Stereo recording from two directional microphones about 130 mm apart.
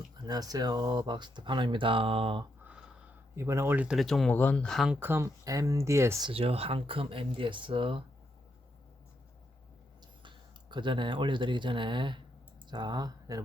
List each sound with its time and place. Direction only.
0.3 s speech: 30° right (ahead or behind); by 2.4 s 45° right (ahead or behind)
2.6 s a sound: 10° right (ahead or behind)
3.3 s speech: 20° right (ahead or behind)
3.9 s speech: centre (ahead or behind)
4.9 s speech: 15° right (ahead or behind)
6.2 s speech: 45° right (ahead or behind)
10.2 s speech: 35° right (ahead or behind)